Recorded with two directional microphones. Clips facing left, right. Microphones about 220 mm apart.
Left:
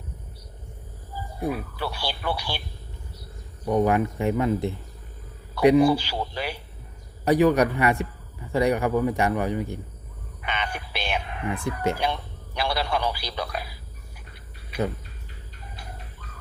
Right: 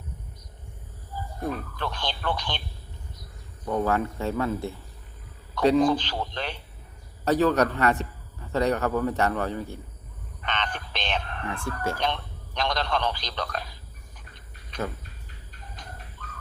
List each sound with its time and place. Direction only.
1.4 s a man's voice: 10° left (ahead or behind)
3.7 s a man's voice: 15° left (ahead or behind)
10.4 s a sound: 10° left (ahead or behind)